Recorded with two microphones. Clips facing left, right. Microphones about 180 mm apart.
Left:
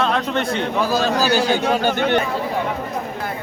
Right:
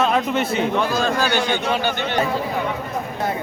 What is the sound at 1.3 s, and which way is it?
Speech, 35° left (ahead or behind).